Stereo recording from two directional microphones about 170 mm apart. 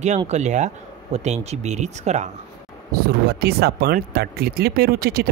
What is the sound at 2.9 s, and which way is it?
Speech, 65° right (ahead or behind).